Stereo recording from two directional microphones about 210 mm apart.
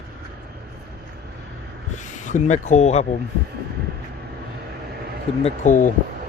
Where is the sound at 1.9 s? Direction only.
35° left (ahead or behind).